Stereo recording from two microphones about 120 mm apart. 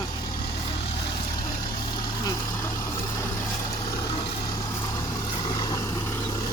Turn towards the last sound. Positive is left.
turn(degrees=30)  # may be behind; listen again after turning